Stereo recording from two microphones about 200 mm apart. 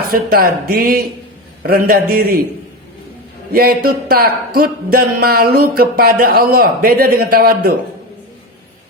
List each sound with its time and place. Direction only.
0.1 s speech: 45° right (ahead or behind)
3.5 s speech: 50° right (ahead or behind)